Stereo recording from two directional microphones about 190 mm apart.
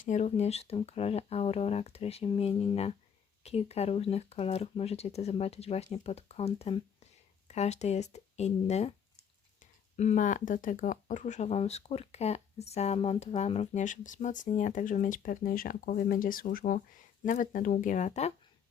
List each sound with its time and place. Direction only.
0.0 s speech: 40° left (ahead or behind)